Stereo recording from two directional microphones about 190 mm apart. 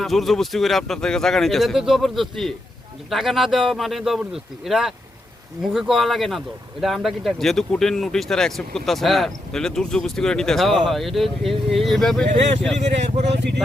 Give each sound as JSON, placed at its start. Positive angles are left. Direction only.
{"t": 0.0, "sound": "speech", "side_deg": 0}
{"t": 12.3, "sound": "speech", "side_deg": -35}
{"t": 13.2, "sound": "speech", "side_deg": -65}